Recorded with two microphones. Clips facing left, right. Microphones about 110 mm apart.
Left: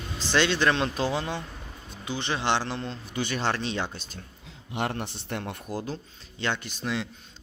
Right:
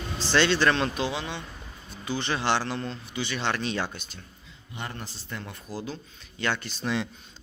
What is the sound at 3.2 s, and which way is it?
Speech, 45° left (ahead or behind).